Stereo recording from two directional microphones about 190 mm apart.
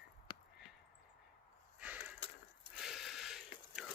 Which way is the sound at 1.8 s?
5° right (ahead or behind).